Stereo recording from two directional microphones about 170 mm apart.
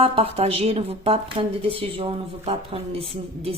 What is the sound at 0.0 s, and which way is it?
A woman's voice, 35° right (ahead or behind).